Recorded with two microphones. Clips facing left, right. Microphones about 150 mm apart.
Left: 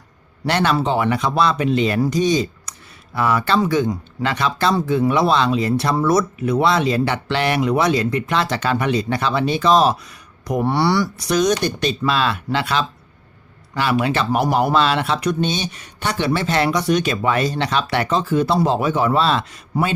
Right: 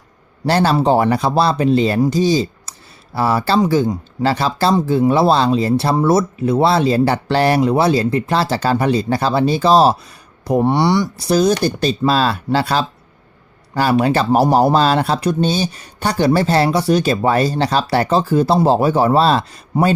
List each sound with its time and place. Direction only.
0.4 s speech: 35° right (ahead or behind)
11.2 s speech: 30° right (ahead or behind)
19.7 s speech: 20° right (ahead or behind)